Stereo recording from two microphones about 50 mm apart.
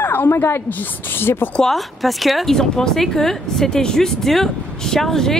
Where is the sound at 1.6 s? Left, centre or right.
Centre.